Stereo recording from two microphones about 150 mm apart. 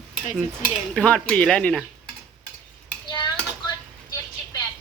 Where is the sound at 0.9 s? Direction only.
5° left (ahead or behind).